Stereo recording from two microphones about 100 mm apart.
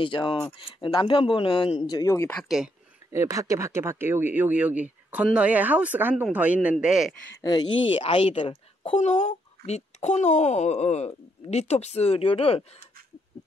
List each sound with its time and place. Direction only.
0.0 s speech: 55° left (ahead or behind)
2.0 s speech: 25° left (ahead or behind)
2.3 s speech: 5° right (ahead or behind)
3.1 s speech: 30° right (ahead or behind); by 7.2 s 5° right (ahead or behind)
8.0 s speech: 65° left (ahead or behind)